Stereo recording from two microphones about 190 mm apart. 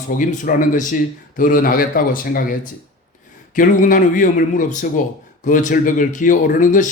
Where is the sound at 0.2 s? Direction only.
45° left (ahead or behind).